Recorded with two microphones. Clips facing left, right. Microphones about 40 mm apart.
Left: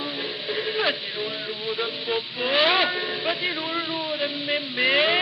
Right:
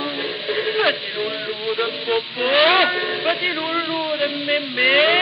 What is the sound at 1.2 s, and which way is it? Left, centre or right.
Music, centre.